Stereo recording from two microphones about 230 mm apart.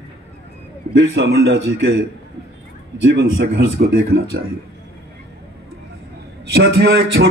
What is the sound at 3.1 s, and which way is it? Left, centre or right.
Speech, right.